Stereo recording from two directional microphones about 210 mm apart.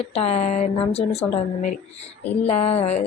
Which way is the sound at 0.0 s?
30° left (ahead or behind).